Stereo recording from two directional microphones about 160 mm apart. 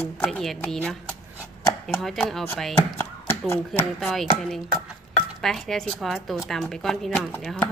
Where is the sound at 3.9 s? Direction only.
Centre (ahead or behind).